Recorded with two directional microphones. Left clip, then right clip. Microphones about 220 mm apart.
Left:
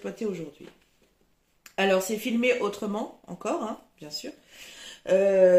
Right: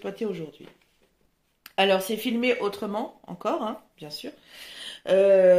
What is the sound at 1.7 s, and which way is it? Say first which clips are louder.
Speech: right 2 dB; 40° right (ahead or behind).